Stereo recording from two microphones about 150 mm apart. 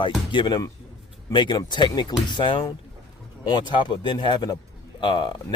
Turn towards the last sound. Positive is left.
turn(degrees=30)  # may be behind; listen again after turning